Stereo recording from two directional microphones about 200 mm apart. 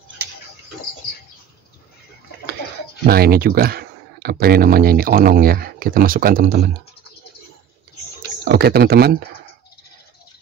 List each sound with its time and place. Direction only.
3.1 s speech: 50° right (ahead or behind)
8.5 s speech: 50° right (ahead or behind)